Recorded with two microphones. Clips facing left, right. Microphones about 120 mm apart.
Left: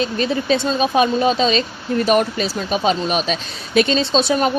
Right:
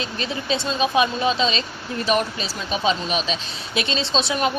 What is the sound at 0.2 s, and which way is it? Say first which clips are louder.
Speech: left 5 dB; 50° left (ahead or behind).